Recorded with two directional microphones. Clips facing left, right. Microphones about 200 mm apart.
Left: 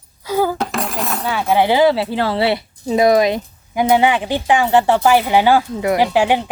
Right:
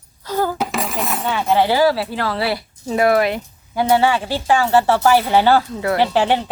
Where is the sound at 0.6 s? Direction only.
Centre (ahead or behind).